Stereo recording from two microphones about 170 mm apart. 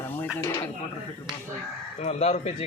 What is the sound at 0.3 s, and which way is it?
Speech, 10° left (ahead or behind).